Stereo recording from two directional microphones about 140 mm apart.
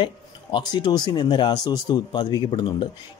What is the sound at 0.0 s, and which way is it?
Speech, 30° left (ahead or behind).